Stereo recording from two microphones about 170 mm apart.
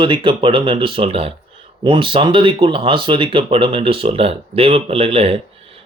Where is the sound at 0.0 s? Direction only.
30° right (ahead or behind).